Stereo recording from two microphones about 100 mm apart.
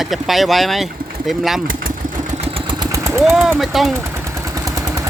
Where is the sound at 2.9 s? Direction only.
30° right (ahead or behind).